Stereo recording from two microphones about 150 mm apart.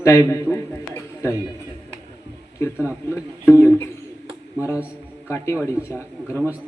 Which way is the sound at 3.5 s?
20° left (ahead or behind).